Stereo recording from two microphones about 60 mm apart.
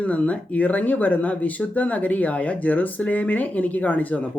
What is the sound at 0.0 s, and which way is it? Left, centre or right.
Speech, left.